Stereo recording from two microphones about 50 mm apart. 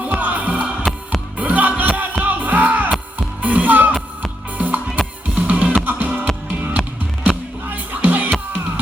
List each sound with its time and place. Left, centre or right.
0.0 s music: right